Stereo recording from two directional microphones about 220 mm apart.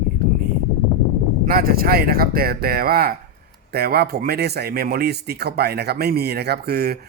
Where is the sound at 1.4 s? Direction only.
45° right (ahead or behind).